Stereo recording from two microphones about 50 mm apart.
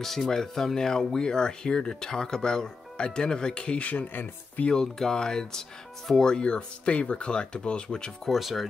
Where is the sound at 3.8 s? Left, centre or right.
Left.